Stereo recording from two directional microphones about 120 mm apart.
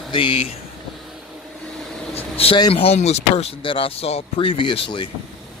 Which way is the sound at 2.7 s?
55° left (ahead or behind).